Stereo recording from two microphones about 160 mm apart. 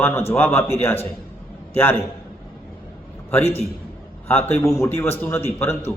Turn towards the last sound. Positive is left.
turn(degrees=15)  # may be behind; listen again after turning